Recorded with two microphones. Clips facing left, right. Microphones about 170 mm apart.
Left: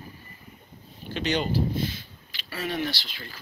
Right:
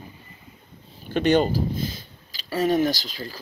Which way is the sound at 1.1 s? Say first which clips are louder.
Right 7 dB; 50° right (ahead or behind).